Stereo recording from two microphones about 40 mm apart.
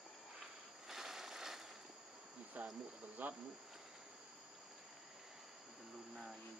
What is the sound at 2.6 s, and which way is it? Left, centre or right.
Cricket, right.